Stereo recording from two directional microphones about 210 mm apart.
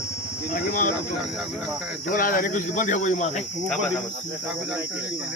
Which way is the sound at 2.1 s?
40° left (ahead or behind).